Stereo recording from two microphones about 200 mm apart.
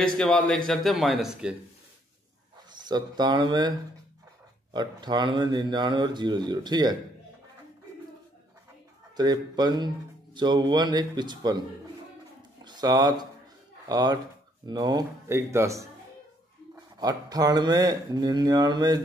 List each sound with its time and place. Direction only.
0.0 s speech: 5° left (ahead or behind)
2.8 s speech: 20° right (ahead or behind)
4.7 s speech: 20° right (ahead or behind)
9.1 s speech: 20° right (ahead or behind)
12.6 s speech: 20° right (ahead or behind)